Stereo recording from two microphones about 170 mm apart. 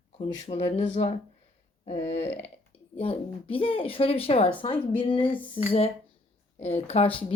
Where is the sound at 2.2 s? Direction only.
40° left (ahead or behind).